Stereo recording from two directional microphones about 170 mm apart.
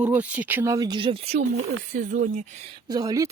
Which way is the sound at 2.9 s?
20° right (ahead or behind).